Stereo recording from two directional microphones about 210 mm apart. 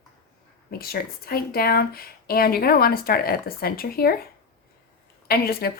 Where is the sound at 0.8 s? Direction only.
45° left (ahead or behind).